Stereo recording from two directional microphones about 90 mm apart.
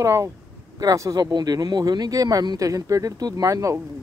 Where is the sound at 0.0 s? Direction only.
35° right (ahead or behind).